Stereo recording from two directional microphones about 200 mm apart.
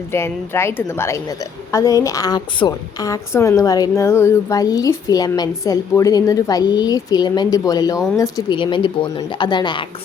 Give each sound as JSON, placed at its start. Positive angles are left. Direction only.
{"t": 0.1, "sound": "a woman's voice", "side_deg": 10}